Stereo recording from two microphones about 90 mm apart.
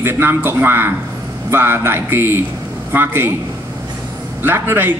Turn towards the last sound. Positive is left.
turn(degrees=-25)  # may be behind; listen again after turning